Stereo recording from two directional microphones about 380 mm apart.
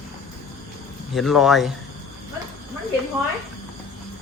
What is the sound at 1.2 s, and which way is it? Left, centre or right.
Speech, centre.